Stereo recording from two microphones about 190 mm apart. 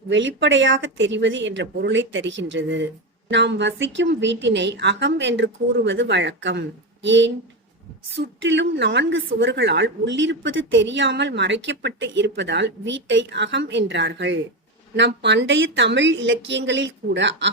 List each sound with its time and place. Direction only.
0.1 s a woman's voice: 75° right (ahead or behind)